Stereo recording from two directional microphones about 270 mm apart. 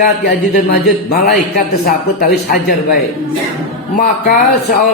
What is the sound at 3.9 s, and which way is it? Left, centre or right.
Speech, left.